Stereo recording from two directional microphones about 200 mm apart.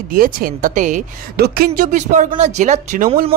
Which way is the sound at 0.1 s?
45° right (ahead or behind).